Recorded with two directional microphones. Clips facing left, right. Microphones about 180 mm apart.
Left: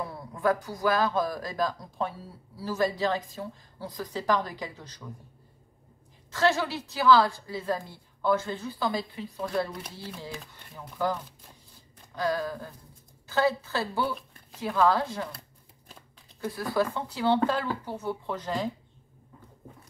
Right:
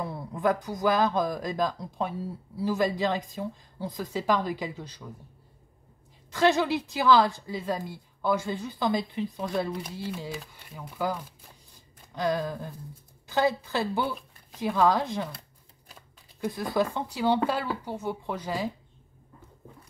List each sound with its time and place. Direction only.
0.0 s a woman's voice: 20° right (ahead or behind)
6.3 s a woman's voice: 20° right (ahead or behind)